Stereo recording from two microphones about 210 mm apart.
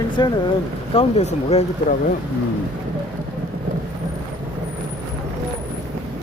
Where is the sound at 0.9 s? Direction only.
30° left (ahead or behind).